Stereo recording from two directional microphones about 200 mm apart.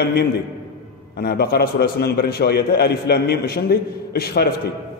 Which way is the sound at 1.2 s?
55° left (ahead or behind).